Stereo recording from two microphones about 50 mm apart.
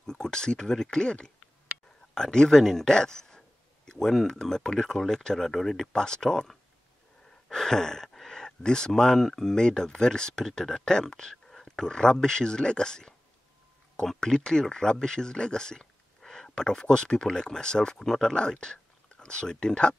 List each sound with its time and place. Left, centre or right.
0.0 s speech: centre